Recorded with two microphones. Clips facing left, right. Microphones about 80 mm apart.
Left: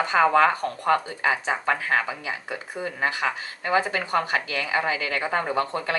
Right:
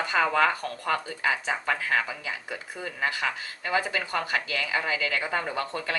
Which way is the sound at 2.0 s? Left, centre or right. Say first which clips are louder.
Left 4 dB; left.